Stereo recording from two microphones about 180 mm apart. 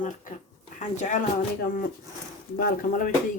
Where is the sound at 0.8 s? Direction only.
40° left (ahead or behind).